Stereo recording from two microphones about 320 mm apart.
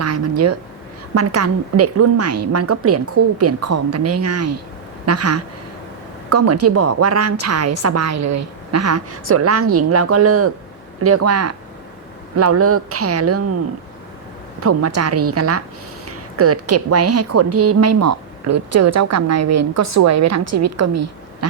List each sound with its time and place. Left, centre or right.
0.0 s a sound: right
1.1 s a woman's voice: right
14.6 s a woman's voice: right